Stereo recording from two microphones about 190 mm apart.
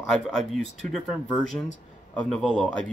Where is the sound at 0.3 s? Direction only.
5° left (ahead or behind).